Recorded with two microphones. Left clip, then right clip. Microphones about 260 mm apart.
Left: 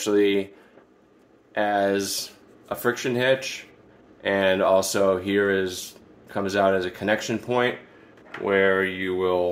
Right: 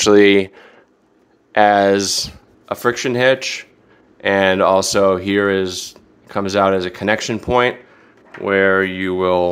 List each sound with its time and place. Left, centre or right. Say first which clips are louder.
0.0 s speech: right 10 dB; right